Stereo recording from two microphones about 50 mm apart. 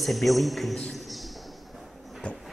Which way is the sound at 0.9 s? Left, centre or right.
Centre.